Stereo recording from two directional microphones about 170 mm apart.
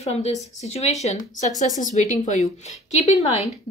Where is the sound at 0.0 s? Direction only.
40° left (ahead or behind).